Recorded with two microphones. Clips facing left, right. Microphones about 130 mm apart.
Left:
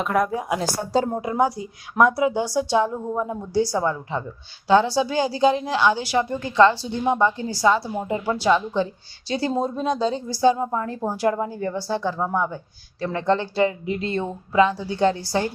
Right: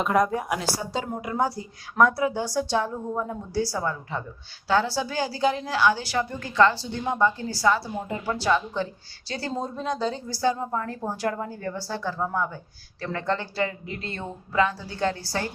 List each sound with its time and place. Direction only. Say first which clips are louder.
0.0 s speech: even; centre (ahead or behind)
0.9 s a woman's voice: left 7 dB; 30° left (ahead or behind)
1.4 s a woman's voice: left 4 dB; 15° left (ahead or behind)